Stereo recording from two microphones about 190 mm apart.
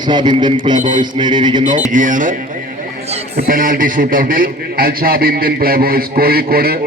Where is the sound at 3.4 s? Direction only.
50° right (ahead or behind).